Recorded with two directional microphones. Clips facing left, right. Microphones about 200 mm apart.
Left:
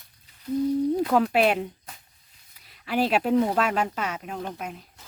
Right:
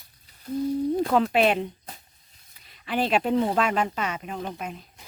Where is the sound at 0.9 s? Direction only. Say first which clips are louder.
Even; 5° left (ahead or behind).